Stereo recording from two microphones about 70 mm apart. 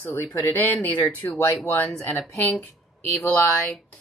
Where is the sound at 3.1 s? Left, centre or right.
Centre.